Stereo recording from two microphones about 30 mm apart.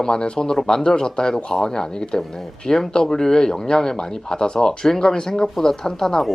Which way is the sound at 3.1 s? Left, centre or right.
Centre.